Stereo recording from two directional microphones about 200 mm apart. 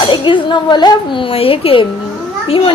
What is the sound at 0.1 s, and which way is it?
A woman's voice, 25° left (ahead or behind).